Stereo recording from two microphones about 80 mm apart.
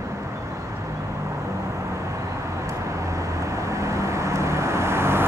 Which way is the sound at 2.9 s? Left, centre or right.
Right.